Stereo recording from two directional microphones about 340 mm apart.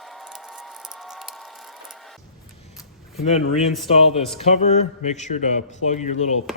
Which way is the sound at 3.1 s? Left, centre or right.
Centre.